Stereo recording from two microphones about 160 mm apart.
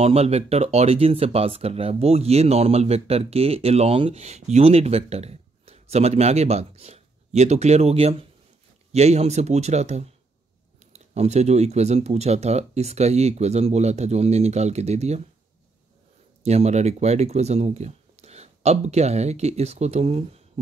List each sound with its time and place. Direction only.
0.0 s speech: 40° right (ahead or behind)
16.4 s speech: 40° right (ahead or behind)